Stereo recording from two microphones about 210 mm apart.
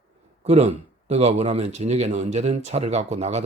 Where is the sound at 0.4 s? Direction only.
30° right (ahead or behind).